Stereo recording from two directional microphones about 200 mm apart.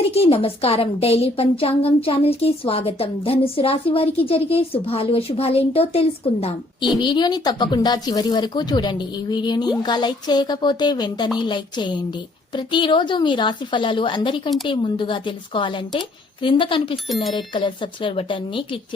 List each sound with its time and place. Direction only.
0.1 s a woman's voice: 30° left (ahead or behind)